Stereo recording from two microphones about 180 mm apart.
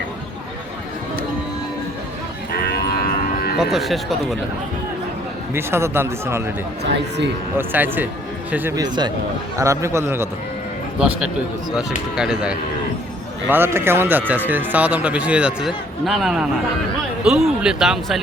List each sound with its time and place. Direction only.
2.5 s cattle: 60° left (ahead or behind)
3.6 s speech: centre (ahead or behind)
5.5 s speech: 15° right (ahead or behind)
6.9 s a man's voice: 75° right (ahead or behind)
7.5 s speech: 10° right (ahead or behind)
8.7 s speech: 25° right (ahead or behind)
11.7 s speech: 5° right (ahead or behind)